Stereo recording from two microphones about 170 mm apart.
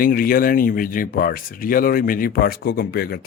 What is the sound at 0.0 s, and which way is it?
Speech, 60° left (ahead or behind).